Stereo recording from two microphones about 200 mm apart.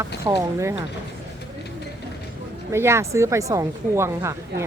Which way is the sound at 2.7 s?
15° right (ahead or behind).